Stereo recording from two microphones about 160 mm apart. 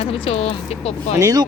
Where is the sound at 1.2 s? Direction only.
20° right (ahead or behind).